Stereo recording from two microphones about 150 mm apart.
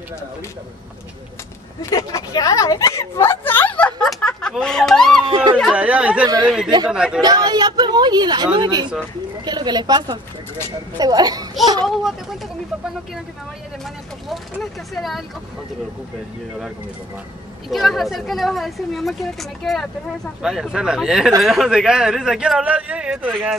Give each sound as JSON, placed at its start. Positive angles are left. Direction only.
{"t": 1.8, "sound": "a woman's voice", "side_deg": 20}
{"t": 5.2, "sound": "speech", "side_deg": -35}
{"t": 5.6, "sound": "a woman's voice", "side_deg": -5}
{"t": 7.2, "sound": "speech", "side_deg": -25}
{"t": 11.8, "sound": "a woman's voice", "side_deg": 0}
{"t": 14.3, "sound": "a woman's voice", "side_deg": 0}
{"t": 17.6, "sound": "a woman's voice", "side_deg": 0}